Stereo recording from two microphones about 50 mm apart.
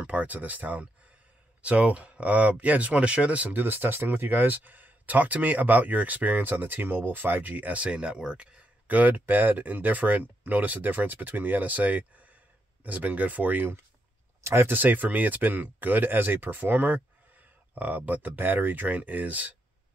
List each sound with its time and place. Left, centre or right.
0.0 s speech: right
3.5 s speech: right
8.8 s speech: right
14.4 s speech: right
14.7 s speech: right